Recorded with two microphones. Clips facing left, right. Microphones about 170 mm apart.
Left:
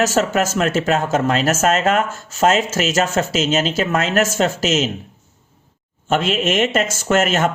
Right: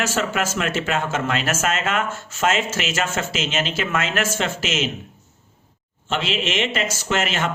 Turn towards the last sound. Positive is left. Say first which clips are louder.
# left 6 dB
turn(degrees=45)  # may be behind; listen again after turning